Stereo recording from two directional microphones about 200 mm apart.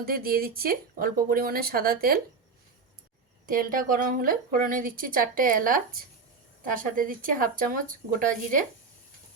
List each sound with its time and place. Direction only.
0.0 s a woman's voice: 45° right (ahead or behind)
3.4 s a woman's voice: 45° right (ahead or behind)